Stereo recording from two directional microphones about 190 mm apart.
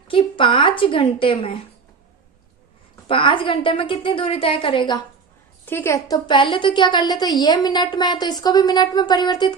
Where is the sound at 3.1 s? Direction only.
25° left (ahead or behind).